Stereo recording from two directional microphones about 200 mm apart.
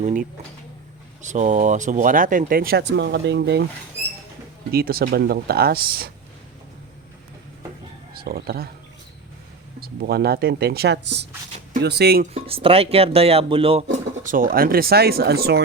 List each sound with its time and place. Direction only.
0.0 s speech: 40° right (ahead or behind); by 3.6 s 60° right (ahead or behind)
4.7 s speech: 50° right (ahead or behind)
8.1 s speech: 50° right (ahead or behind)
9.8 s speech: 50° right (ahead or behind)
12.3 s speech: 25° right (ahead or behind)
14.3 s speech: 45° right (ahead or behind)